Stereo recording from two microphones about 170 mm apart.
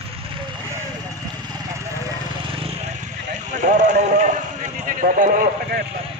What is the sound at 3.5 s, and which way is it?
A man's voice, 45° right (ahead or behind).